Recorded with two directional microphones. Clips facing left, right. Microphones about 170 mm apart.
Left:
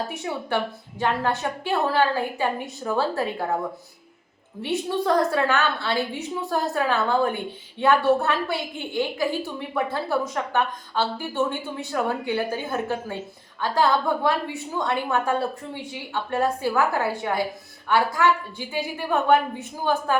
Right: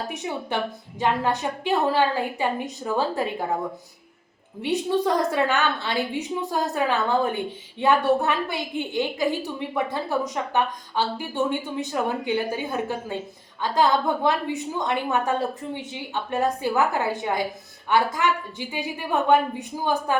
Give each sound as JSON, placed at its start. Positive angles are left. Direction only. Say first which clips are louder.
{"t": 0.2, "sound": "a woman's voice", "louder": "left 1 dB", "side_deg": -20}
{"t": 4.6, "sound": "a woman's voice", "louder": "right 2 dB", "side_deg": -20}